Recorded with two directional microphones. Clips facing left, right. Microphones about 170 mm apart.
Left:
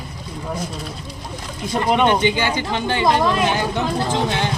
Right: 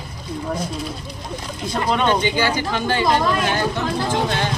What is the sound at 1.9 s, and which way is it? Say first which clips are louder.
Speech: left 2 dB; 20° left (ahead or behind).